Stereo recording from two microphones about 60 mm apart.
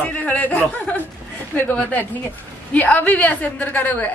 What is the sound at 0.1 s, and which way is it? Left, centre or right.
A woman's voice, left.